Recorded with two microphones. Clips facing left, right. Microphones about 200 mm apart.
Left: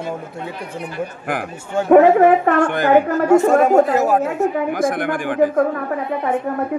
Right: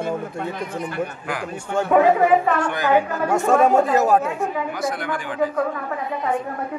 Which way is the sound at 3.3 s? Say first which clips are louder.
Left 4 dB; 5° left (ahead or behind).